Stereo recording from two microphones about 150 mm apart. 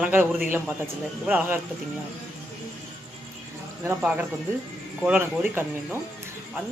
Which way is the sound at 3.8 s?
10° right (ahead or behind).